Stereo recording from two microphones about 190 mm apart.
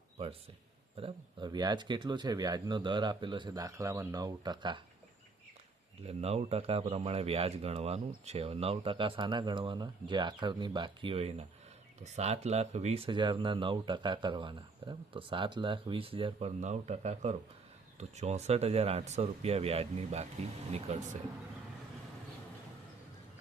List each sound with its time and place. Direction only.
0.9 s speech: 25° right (ahead or behind)
6.0 s speech: 30° right (ahead or behind)